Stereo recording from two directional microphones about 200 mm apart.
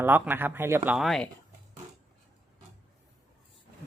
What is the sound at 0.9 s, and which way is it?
Speech, centre (ahead or behind).